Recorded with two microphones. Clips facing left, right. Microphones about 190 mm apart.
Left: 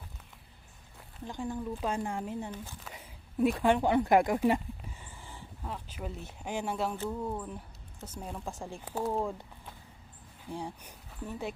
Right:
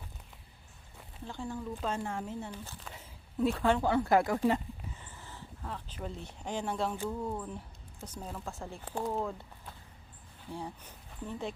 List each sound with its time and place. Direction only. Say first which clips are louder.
1.3 s speech: left 3 dB; 15° left (ahead or behind)
10.5 s speech: left 2 dB; 15° left (ahead or behind)